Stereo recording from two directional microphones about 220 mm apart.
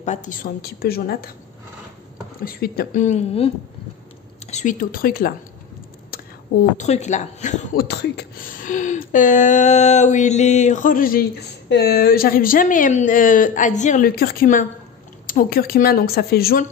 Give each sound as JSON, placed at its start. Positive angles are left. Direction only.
{"t": 0.0, "sound": "a woman's voice", "side_deg": 35}
{"t": 2.4, "sound": "speech", "side_deg": 45}
{"t": 6.8, "sound": "speech", "side_deg": 30}
{"t": 7.9, "sound": "a woman's voice", "side_deg": 50}